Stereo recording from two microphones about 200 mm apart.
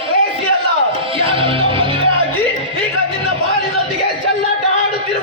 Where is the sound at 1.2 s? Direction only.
25° right (ahead or behind).